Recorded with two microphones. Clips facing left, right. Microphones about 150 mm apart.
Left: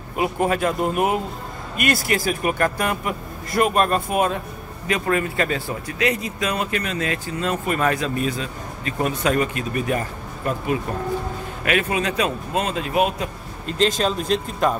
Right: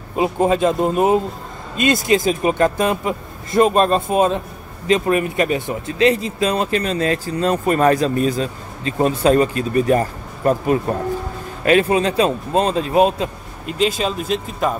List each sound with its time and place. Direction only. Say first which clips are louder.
0.1 s speech: right 4 dB; 25° right (ahead or behind)
13.7 s speech: right 1 dB; 5° right (ahead or behind)